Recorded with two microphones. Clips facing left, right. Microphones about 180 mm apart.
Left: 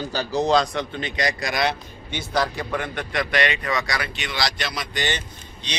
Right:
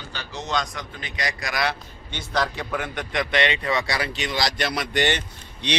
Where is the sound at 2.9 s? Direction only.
20° right (ahead or behind).